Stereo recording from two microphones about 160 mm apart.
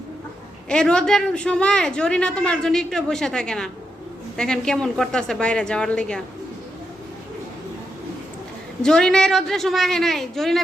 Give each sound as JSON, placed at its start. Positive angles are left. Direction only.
{"t": 0.7, "sound": "speech", "side_deg": 5}
{"t": 8.8, "sound": "speech", "side_deg": 5}